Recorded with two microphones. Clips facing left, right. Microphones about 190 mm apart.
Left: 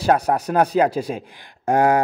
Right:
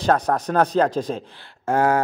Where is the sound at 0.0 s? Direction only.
10° left (ahead or behind).